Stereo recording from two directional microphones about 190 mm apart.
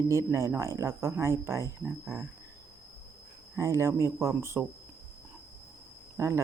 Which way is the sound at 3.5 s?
15° right (ahead or behind).